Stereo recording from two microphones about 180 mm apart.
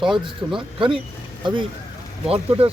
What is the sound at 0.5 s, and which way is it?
Speech, 30° right (ahead or behind).